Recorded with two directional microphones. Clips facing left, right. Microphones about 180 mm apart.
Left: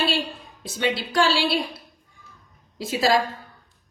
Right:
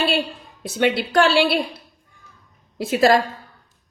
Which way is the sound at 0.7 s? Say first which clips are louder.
Right 5 dB; 60° right (ahead or behind).